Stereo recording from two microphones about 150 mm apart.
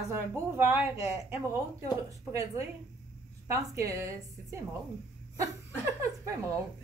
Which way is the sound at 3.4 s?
20° right (ahead or behind).